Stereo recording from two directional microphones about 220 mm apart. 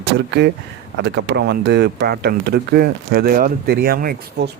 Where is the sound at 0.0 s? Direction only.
50° right (ahead or behind).